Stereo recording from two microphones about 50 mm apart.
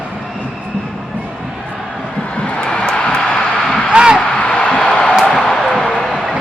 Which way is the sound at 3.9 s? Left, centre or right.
Centre.